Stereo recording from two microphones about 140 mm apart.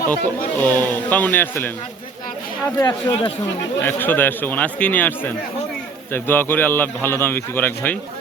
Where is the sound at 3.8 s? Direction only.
15° left (ahead or behind).